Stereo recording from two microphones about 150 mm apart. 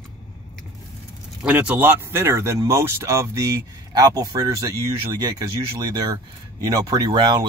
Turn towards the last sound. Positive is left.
turn(degrees=-30)  # may be behind; listen again after turning